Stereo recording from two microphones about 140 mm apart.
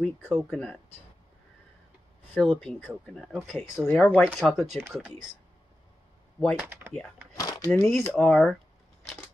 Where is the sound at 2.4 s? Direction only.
Centre (ahead or behind).